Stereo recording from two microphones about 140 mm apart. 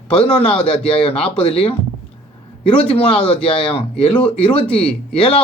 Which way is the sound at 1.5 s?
45° left (ahead or behind).